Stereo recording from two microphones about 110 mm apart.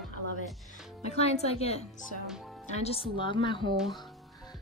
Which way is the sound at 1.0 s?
75° left (ahead or behind).